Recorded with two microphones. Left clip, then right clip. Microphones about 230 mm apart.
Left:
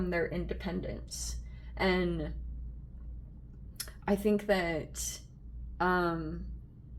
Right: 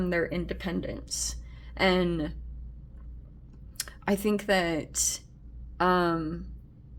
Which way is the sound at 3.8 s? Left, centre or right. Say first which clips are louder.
Right 3 dB; right.